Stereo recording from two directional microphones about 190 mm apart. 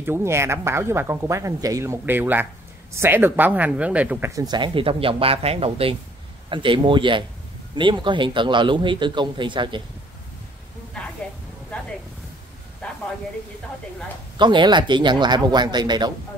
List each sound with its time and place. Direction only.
0.0 s a man's voice: 10° right (ahead or behind)
12.8 s a sound: 5° left (ahead or behind)
14.4 s a man's voice: 25° right (ahead or behind)